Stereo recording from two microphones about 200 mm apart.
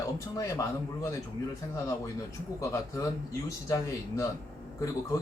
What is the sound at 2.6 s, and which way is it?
Speech, 15° left (ahead or behind).